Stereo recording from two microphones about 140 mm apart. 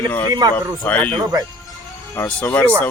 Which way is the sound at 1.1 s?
25° right (ahead or behind).